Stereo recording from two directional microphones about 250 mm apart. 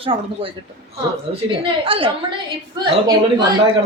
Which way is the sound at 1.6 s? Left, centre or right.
Right.